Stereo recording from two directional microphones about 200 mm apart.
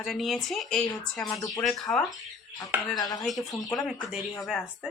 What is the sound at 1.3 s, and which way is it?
Speech, 15° left (ahead or behind).